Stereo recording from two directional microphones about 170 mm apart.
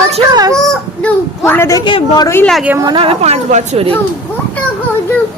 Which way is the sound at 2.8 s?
30° right (ahead or behind).